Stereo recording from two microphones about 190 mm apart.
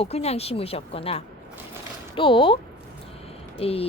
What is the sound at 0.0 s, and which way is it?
Speech, 35° left (ahead or behind).